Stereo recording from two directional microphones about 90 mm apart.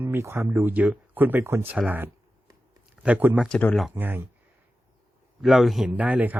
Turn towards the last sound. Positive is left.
turn(degrees=-15)  # may be behind; listen again after turning